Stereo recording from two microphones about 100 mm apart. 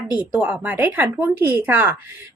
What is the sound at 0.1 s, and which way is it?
Speech, 15° right (ahead or behind).